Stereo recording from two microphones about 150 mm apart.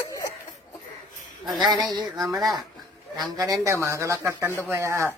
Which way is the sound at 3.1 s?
25° right (ahead or behind).